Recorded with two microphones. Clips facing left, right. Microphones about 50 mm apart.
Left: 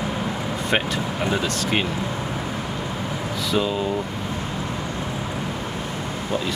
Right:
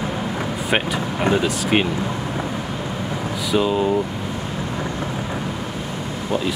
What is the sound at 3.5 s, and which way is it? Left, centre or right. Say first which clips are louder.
Speech: right 4 dB; centre.